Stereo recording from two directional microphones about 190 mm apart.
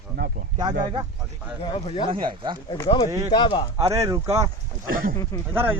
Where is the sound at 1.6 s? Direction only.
25° left (ahead or behind).